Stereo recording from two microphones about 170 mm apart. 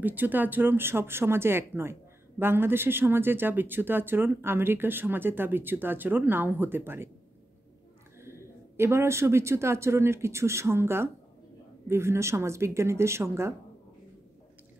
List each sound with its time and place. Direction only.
0.0 s speech: 10° right (ahead or behind)
8.2 s speech: 15° right (ahead or behind)